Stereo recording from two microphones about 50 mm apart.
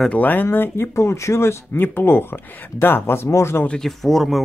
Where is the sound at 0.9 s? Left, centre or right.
Left.